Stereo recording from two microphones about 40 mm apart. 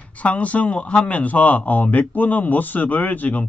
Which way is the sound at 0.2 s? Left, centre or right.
Left.